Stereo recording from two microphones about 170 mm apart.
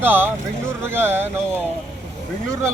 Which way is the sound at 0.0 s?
10° right (ahead or behind).